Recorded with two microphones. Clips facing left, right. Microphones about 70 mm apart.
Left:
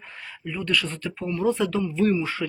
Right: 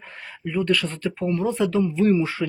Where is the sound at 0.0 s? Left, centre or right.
Right.